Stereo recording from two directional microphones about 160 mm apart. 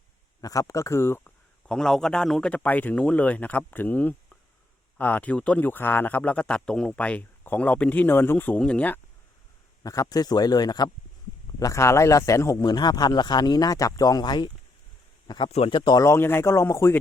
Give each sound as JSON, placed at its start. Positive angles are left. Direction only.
{"t": 0.4, "sound": "speech", "side_deg": 20}
{"t": 9.8, "sound": "speech", "side_deg": 20}
{"t": 15.5, "sound": "speech", "side_deg": 35}